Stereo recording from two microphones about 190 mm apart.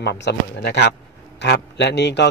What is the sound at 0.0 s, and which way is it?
A man's voice, 60° left (ahead or behind).